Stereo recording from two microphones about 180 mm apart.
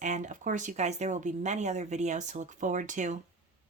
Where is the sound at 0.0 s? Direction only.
45° right (ahead or behind).